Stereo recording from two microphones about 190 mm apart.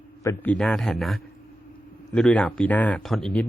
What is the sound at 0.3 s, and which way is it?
Speech, 5° left (ahead or behind).